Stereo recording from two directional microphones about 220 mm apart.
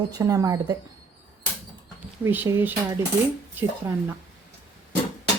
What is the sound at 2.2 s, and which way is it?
A woman's voice, 10° right (ahead or behind).